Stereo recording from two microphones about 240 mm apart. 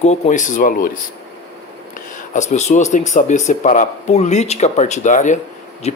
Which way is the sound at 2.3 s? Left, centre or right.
Left.